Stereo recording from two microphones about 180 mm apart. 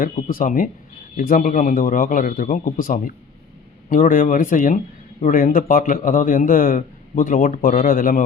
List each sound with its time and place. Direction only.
0.0 s a man's voice: 50° left (ahead or behind)